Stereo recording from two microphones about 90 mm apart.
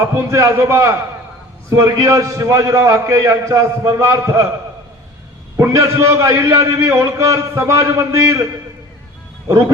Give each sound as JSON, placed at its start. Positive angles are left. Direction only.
{"t": 0.0, "sound": "a man's voice", "side_deg": -30}
{"t": 5.5, "sound": "a man's voice", "side_deg": -35}
{"t": 9.5, "sound": "speech", "side_deg": -30}